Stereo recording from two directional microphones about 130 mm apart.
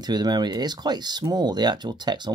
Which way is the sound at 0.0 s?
30° right (ahead or behind).